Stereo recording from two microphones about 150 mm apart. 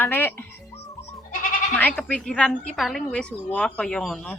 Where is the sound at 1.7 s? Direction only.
10° left (ahead or behind).